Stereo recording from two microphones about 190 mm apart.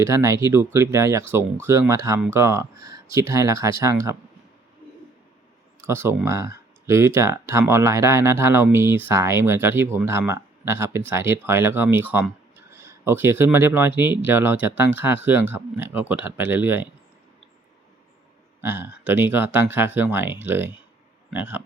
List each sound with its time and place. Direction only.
0.0 s speech: 15° right (ahead or behind)
5.8 s speech: 15° right (ahead or behind)
18.6 s speech: 10° right (ahead or behind)